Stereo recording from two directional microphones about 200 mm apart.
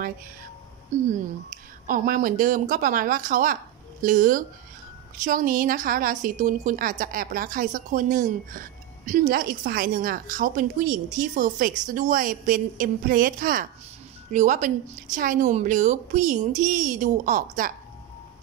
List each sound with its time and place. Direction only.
0.9 s a woman's voice: 40° right (ahead or behind)